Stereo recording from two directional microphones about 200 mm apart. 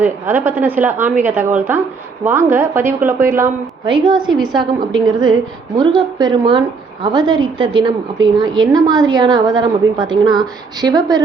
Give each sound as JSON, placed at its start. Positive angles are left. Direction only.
{"t": 0.0, "sound": "a woman's voice", "side_deg": -10}
{"t": 3.8, "sound": "a woman's voice", "side_deg": -25}